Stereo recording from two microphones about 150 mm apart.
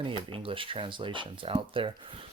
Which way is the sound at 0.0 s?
35° right (ahead or behind).